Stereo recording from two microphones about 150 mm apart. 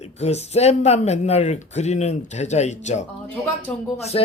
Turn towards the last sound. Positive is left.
turn(degrees=45)  # may be behind; listen again after turning